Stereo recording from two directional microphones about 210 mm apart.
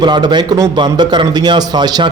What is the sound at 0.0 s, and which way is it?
A man's voice, 20° right (ahead or behind).